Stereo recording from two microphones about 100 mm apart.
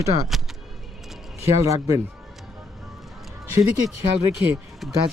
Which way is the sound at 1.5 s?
30° right (ahead or behind).